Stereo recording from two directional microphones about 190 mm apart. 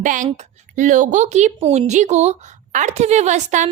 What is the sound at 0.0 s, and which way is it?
A woman's voice, 45° right (ahead or behind).